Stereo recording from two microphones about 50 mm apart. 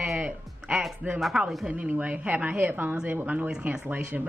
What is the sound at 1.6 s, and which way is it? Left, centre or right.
A woman's voice, right.